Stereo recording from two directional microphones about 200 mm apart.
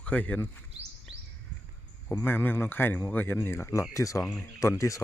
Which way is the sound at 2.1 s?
10° left (ahead or behind).